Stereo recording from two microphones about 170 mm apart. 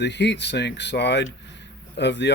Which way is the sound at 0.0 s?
90° left.